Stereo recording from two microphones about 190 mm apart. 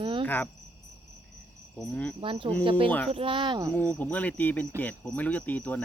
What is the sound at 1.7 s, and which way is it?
Speech, 5° left (ahead or behind).